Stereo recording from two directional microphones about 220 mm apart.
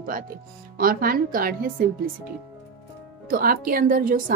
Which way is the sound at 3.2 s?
40° right (ahead or behind).